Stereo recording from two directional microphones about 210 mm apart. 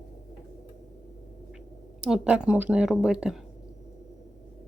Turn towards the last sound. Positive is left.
turn(degrees=-5)  # may be behind; listen again after turning